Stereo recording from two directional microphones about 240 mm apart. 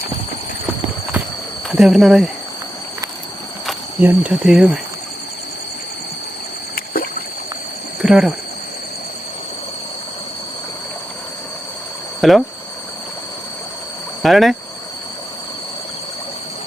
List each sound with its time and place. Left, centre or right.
1.7 s speech: centre
3.7 s cricket: centre
6.7 s rowboat: left
8.0 s speech: centre
12.2 s speech: centre
14.2 s speech: centre